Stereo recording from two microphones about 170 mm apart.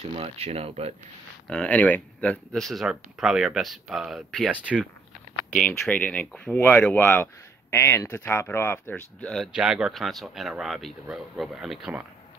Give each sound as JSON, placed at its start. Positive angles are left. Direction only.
{"t": 0.1, "sound": "speech", "side_deg": -35}
{"t": 1.5, "sound": "speech", "side_deg": 5}
{"t": 5.5, "sound": "speech", "side_deg": 5}
{"t": 9.3, "sound": "speech", "side_deg": 0}